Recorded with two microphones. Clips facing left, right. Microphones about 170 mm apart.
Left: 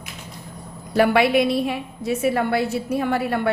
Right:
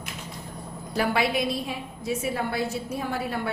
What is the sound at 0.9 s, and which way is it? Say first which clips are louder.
A woman's voice: left 8 dB; 65° left (ahead or behind).